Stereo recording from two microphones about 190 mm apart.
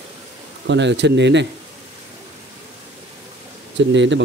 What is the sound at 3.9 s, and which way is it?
Speech, 70° right (ahead or behind).